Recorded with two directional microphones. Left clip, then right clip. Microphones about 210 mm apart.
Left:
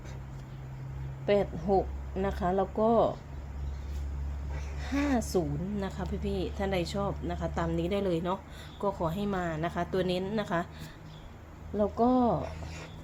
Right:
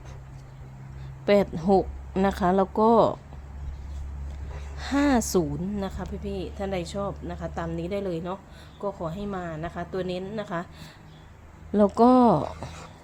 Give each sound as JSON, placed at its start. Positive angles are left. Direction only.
{"t": 1.3, "sound": "speech", "side_deg": -30}
{"t": 4.8, "sound": "speech", "side_deg": -30}
{"t": 5.7, "sound": "speech", "side_deg": -15}
{"t": 6.2, "sound": "a woman's voice", "side_deg": 0}
{"t": 11.8, "sound": "speech", "side_deg": -40}